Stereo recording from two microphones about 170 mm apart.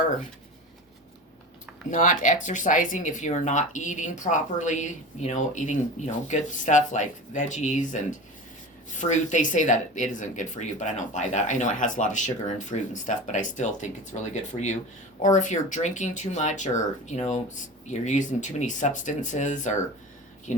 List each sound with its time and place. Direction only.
1.9 s speech: 45° left (ahead or behind)